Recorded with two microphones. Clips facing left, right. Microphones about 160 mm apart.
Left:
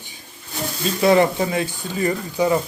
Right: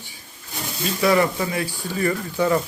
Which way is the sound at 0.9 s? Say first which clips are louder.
Left 3 dB; 25° left (ahead or behind).